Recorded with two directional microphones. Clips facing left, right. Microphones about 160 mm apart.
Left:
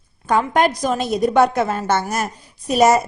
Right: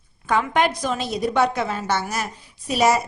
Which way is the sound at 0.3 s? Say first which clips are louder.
Left 3 dB; 45° left (ahead or behind).